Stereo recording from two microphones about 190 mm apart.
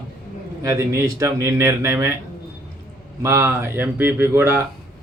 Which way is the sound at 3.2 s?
15° right (ahead or behind).